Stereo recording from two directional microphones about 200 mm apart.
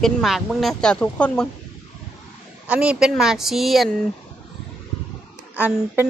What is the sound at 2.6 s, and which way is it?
Speech, 5° right (ahead or behind).